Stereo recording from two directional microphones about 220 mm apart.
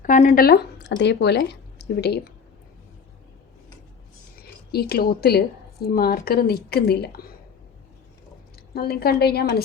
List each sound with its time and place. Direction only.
0.0 s speech: 35° left (ahead or behind)
4.4 s a woman's voice: 45° left (ahead or behind)
8.7 s a woman's voice: 45° left (ahead or behind)